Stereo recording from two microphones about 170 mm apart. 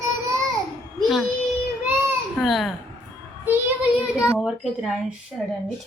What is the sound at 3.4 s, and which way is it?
Child singing, 10° right (ahead or behind).